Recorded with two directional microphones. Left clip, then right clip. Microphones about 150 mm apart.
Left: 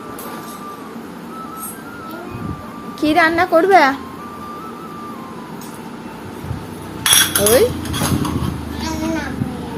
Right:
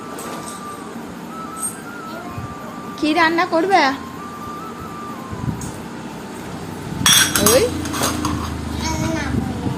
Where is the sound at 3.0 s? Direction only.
40° left (ahead or behind).